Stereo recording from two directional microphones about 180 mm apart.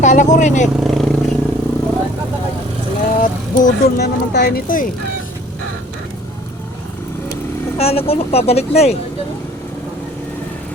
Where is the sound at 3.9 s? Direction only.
65° left (ahead or behind).